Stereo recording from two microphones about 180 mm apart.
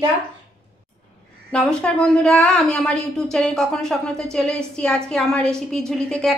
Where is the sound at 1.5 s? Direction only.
5° left (ahead or behind).